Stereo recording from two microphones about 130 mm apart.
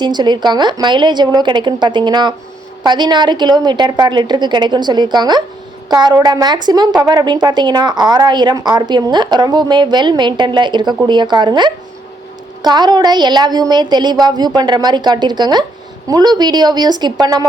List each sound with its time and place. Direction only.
0.0 s a woman's voice: 35° right (ahead or behind)